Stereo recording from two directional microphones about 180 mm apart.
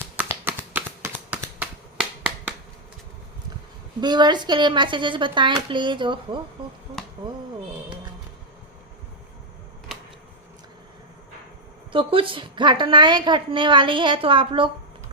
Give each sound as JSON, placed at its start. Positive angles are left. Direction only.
{"t": 0.2, "sound": "a sound", "side_deg": -10}
{"t": 2.0, "sound": "finger snapping", "side_deg": -5}
{"t": 4.0, "sound": "a woman's voice", "side_deg": -25}
{"t": 11.9, "sound": "a woman's voice", "side_deg": -30}